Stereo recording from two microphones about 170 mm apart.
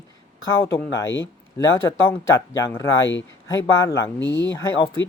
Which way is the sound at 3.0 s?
90° left.